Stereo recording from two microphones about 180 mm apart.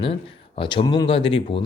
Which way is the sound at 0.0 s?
30° left (ahead or behind).